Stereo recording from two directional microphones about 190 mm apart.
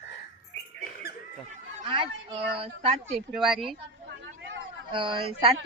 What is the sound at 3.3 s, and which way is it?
Speech, centre (ahead or behind).